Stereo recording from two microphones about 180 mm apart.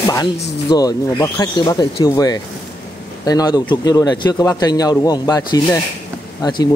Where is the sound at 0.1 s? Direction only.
20° left (ahead or behind).